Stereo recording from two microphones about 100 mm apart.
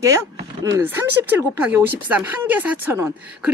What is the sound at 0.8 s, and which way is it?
Speech, 20° right (ahead or behind).